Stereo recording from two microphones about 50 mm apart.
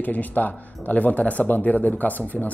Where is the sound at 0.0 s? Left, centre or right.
Left.